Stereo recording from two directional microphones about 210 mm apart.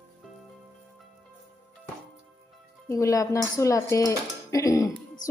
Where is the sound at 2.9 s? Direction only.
15° left (ahead or behind).